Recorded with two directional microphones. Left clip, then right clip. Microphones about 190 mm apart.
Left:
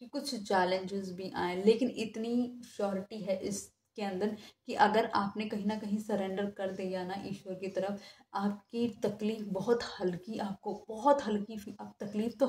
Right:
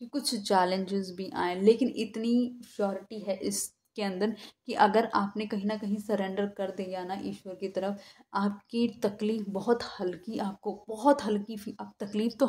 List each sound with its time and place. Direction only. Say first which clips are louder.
0.1 s a woman's voice: right 5 dB; 40° right (ahead or behind)